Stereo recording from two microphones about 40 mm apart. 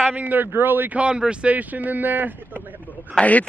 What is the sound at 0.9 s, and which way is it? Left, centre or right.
Speech, right.